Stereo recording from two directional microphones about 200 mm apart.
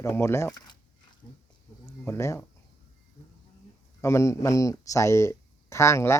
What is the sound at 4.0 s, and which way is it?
Speech, 15° left (ahead or behind).